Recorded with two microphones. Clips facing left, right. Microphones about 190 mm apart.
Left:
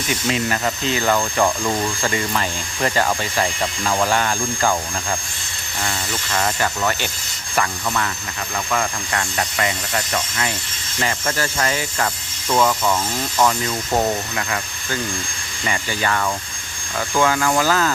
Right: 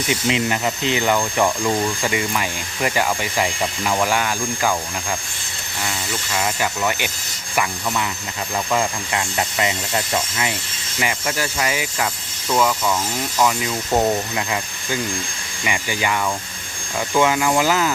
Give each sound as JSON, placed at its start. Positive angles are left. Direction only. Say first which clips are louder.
{"t": 0.1, "sound": "speech", "louder": "right 1 dB", "side_deg": -20}
{"t": 6.3, "sound": "speech", "louder": "left 1 dB", "side_deg": -10}
{"t": 12.5, "sound": "speech", "louder": "left 1 dB", "side_deg": 0}
{"t": 14.3, "sound": "speech", "louder": "right 1 dB", "side_deg": -20}